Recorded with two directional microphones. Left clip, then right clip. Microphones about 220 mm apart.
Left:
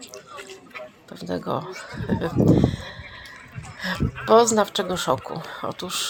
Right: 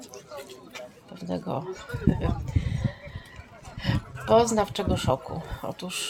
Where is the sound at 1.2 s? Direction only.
20° left (ahead or behind).